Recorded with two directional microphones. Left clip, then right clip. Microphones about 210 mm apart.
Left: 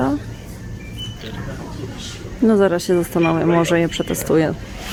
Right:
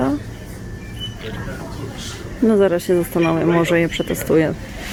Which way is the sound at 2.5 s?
15° left (ahead or behind).